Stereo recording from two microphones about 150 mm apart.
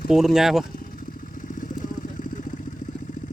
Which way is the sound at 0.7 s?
70° left (ahead or behind).